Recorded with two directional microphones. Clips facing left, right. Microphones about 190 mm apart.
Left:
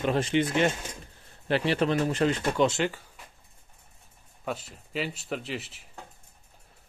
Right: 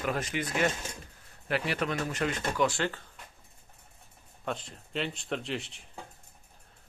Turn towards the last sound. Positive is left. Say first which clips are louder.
# even
turn(degrees=5)  # may be behind; listen again after turning